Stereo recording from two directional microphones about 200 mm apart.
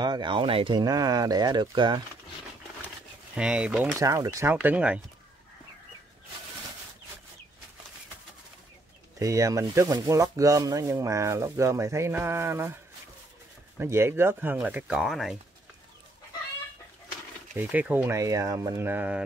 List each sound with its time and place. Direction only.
0.0 s speech: 20° right (ahead or behind)
3.3 s speech: 5° right (ahead or behind)
9.2 s speech: 15° right (ahead or behind)
13.7 s speech: 15° right (ahead or behind)
17.6 s speech: 5° right (ahead or behind)